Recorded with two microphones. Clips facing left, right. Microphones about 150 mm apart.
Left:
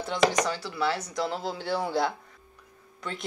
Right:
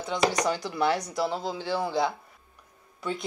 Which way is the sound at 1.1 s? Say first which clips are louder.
Right 1 dB; 5° right (ahead or behind).